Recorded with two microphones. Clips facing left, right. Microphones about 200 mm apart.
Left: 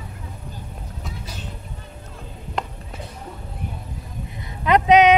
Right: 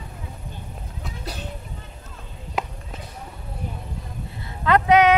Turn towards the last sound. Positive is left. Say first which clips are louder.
# left 2 dB
turn(degrees=20)  # may be behind; listen again after turning